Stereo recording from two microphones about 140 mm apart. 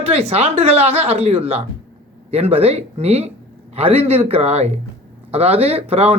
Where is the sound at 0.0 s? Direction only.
45° right (ahead or behind).